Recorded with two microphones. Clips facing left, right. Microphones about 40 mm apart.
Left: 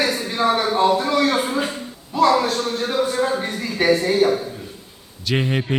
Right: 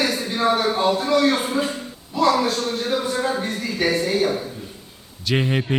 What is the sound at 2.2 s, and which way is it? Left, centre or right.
A man's voice, centre.